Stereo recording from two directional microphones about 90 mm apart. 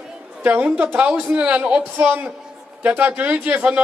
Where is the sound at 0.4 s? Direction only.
20° right (ahead or behind).